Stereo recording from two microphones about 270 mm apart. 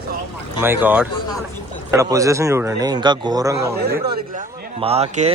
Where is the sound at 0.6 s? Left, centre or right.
Centre.